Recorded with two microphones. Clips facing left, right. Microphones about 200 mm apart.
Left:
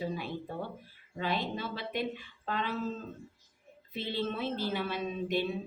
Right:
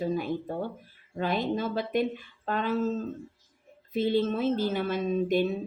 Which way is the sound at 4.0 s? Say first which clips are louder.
Right 9 dB; 45° right (ahead or behind).